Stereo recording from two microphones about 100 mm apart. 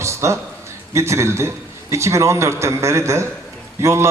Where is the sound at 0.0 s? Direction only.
30° right (ahead or behind).